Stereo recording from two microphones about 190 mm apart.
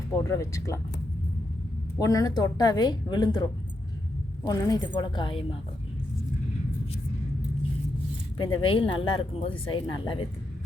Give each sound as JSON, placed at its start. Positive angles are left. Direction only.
{"t": 0.3, "sound": "speech", "side_deg": 15}
{"t": 2.0, "sound": "speech", "side_deg": 20}
{"t": 8.4, "sound": "speech", "side_deg": 25}